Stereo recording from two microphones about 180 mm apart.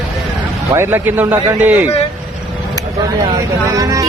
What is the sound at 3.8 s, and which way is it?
Speech, 20° right (ahead or behind).